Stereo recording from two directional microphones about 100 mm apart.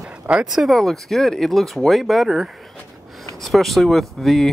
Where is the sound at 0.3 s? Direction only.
5° right (ahead or behind).